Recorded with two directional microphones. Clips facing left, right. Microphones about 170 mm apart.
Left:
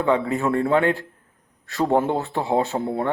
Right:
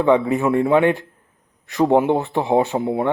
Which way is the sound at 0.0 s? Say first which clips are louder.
Right 4 dB; 20° right (ahead or behind).